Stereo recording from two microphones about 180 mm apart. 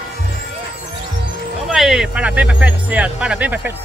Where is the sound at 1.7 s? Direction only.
5° right (ahead or behind).